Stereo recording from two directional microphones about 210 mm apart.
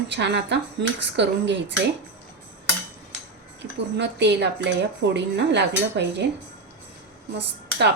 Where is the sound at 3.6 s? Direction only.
55° right (ahead or behind).